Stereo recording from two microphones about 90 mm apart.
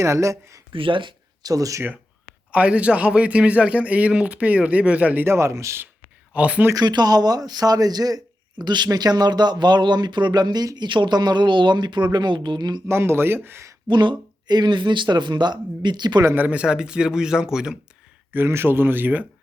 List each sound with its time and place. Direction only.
0.0 s speech: 35° right (ahead or behind)
0.7 s speech: 75° right (ahead or behind)
1.4 s speech: 45° right (ahead or behind)
2.5 s a man's voice: 15° right (ahead or behind); by 5.9 s 30° right (ahead or behind)
6.3 s a man's voice: 15° right (ahead or behind)
6.7 s speech: 50° right (ahead or behind)
12.9 s speech: 25° right (ahead or behind)
13.8 s speech: 60° right (ahead or behind)
16.3 s a man's voice: 15° right (ahead or behind)
18.3 s speech: 25° right (ahead or behind)